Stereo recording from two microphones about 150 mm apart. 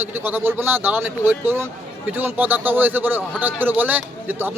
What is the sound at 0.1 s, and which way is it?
A man's voice, 15° right (ahead or behind).